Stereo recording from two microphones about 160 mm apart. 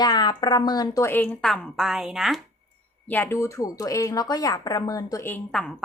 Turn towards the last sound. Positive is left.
turn(degrees=5)  # may be behind; listen again after turning